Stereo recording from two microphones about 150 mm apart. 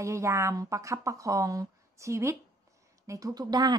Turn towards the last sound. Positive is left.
turn(degrees=-25)  # may be behind; listen again after turning